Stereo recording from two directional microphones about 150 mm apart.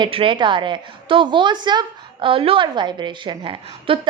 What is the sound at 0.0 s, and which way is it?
A woman's voice, 35° right (ahead or behind).